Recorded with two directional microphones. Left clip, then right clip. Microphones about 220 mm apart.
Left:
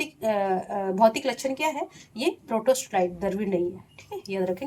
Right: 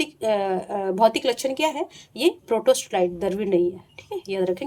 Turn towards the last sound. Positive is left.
turn(degrees=-50)  # may be behind; listen again after turning